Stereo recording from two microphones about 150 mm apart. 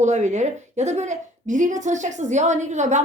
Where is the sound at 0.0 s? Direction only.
50° right (ahead or behind).